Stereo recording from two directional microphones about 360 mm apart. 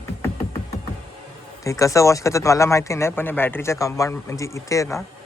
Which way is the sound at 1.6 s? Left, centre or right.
Centre.